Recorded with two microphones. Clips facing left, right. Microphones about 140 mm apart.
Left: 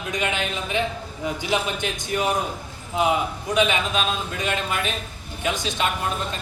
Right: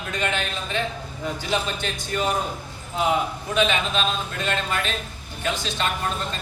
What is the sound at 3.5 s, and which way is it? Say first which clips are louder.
A man's voice: left 1 dB; 10° left (ahead or behind).